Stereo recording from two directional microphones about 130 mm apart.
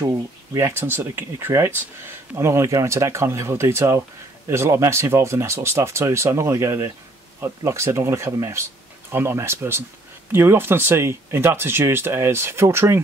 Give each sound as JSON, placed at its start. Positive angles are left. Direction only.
{"t": 0.1, "sound": "speech", "side_deg": -20}